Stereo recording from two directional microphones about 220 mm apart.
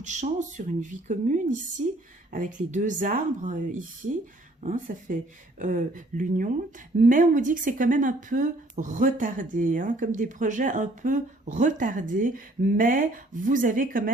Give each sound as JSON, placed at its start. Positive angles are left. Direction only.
{"t": 0.0, "sound": "a woman's voice", "side_deg": -35}
{"t": 2.7, "sound": "a woman's voice", "side_deg": -35}